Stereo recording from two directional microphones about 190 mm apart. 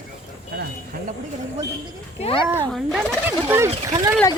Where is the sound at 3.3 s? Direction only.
10° right (ahead or behind).